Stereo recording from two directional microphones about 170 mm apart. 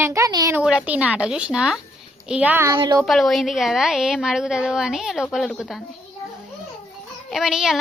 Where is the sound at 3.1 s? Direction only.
Centre (ahead or behind).